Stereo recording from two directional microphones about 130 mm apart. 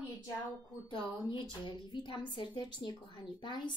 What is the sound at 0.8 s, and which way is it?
A woman's voice, 40° left (ahead or behind).